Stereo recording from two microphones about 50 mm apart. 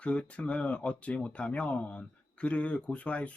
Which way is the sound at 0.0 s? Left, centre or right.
Left.